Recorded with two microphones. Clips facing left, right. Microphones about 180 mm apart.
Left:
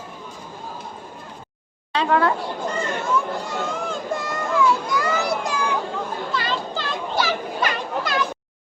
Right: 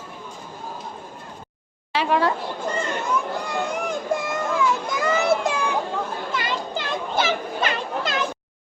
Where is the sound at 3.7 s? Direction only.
15° right (ahead or behind).